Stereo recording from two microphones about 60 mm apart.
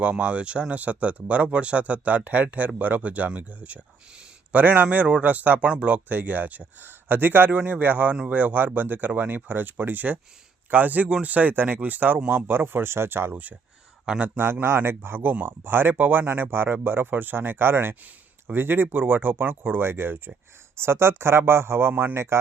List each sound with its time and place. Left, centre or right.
0.0 s speech: right
12.5 s speech: right
13.3 s speech: right
14.6 s speech: right